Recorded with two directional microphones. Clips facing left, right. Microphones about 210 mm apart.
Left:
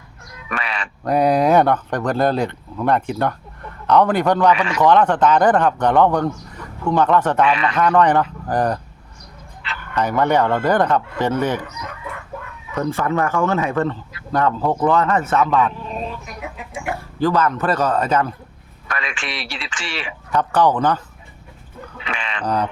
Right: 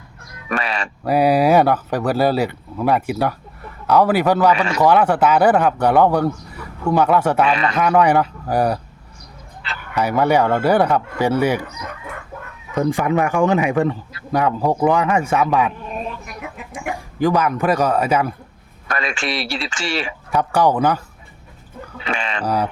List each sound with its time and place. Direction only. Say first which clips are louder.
0.4 s a sound: right 4 dB; 40° right (ahead or behind)
1.0 s speech: right 1 dB; 5° right (ahead or behind)
4.5 s a man's voice: right 1 dB; 40° right (ahead or behind)
4.8 s speech: even; 10° right (ahead or behind)
7.5 s a man's voice: right 1 dB; 40° right (ahead or behind)
7.8 s speech: even; 10° right (ahead or behind)
9.9 s speech: right 1 dB; 10° right (ahead or behind)
12.7 s speech: right 3 dB; 15° right (ahead or behind)
16.9 s speech: right 1 dB; 15° right (ahead or behind)
18.9 s a man's voice: right 5 dB; 40° right (ahead or behind)
20.3 s speech: even; 10° right (ahead or behind)
22.0 s sheep: right 4 dB; 40° right (ahead or behind)
22.4 s speech: even; 10° right (ahead or behind)